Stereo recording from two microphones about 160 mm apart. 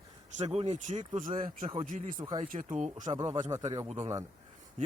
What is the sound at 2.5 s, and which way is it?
Speech, 50° right (ahead or behind).